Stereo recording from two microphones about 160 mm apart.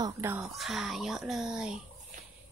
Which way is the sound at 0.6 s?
Centre (ahead or behind).